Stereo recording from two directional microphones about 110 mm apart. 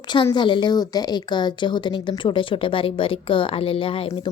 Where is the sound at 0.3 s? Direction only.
45° left (ahead or behind).